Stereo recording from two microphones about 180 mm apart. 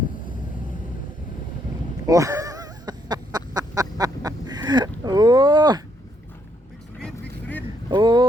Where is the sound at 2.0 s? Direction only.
20° right (ahead or behind).